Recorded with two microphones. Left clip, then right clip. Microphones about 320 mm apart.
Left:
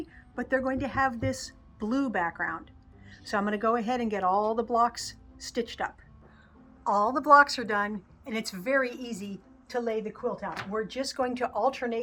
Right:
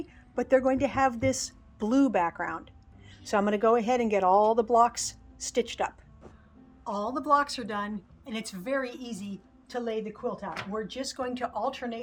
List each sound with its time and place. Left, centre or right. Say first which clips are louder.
0.3 s speech: right 5 dB; right
6.8 s a woman's voice: left 6 dB; centre